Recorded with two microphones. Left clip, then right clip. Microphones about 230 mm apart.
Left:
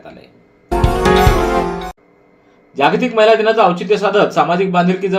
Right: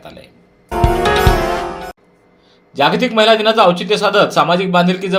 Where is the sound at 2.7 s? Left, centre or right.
Right.